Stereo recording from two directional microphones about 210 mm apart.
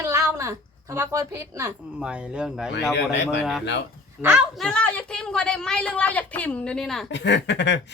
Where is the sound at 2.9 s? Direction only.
55° left (ahead or behind).